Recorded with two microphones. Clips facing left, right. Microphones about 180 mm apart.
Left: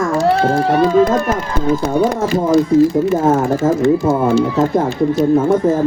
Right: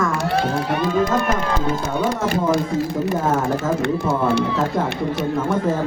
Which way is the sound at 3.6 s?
30° left (ahead or behind).